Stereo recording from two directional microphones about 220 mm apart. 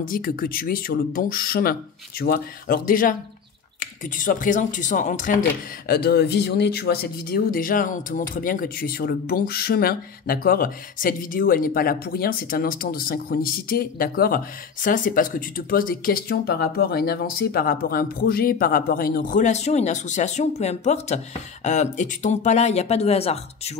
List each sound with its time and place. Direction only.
0.0 s speech: 40° left (ahead or behind)